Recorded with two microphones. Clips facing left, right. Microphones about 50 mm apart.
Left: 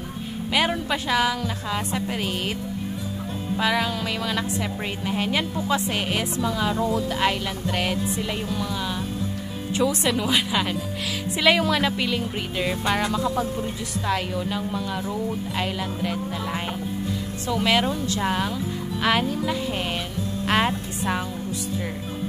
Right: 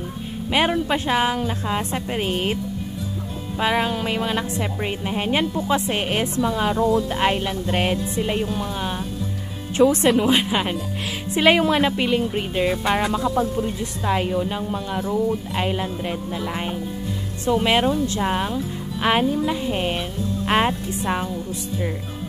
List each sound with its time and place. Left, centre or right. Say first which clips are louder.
0.8 s a woman's voice: right 2 dB; right
3.5 s a woman's voice: right 2 dB; right
12.2 s music: right 5 dB; centre
13.6 s a woman's voice: right 4 dB; right
15.0 s music: right 5 dB; centre
15.6 s a woman's voice: right 1 dB; right
17.5 s a woman's voice: right 4 dB; right
20.4 s music: right 2 dB; centre